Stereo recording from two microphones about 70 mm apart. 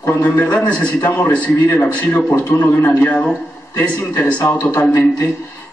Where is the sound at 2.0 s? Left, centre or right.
Left.